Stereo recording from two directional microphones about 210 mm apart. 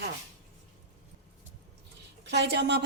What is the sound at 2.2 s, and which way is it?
Speech, 55° right (ahead or behind).